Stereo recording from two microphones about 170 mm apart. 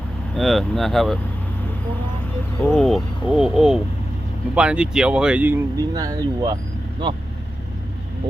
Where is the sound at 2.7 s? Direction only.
Centre (ahead or behind); by 7.2 s 30° right (ahead or behind).